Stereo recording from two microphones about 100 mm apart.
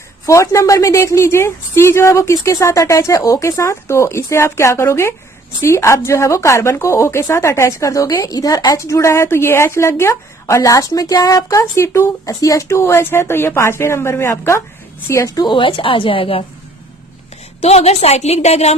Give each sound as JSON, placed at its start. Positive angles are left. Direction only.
{"t": 0.3, "sound": "a woman's voice", "side_deg": 30}
{"t": 15.4, "sound": "a woman's voice", "side_deg": 55}
{"t": 17.6, "sound": "a woman's voice", "side_deg": 90}